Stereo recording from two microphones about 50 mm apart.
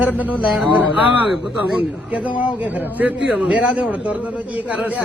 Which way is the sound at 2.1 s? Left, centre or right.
Right.